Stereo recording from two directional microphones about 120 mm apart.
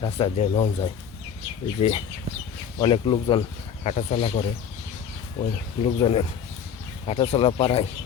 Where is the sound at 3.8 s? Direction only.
70° left (ahead or behind).